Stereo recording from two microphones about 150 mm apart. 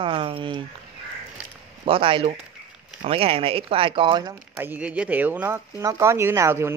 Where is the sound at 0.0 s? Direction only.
35° right (ahead or behind).